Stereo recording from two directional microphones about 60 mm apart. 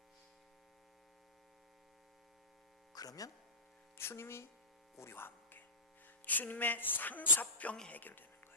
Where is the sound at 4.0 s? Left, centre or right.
Left.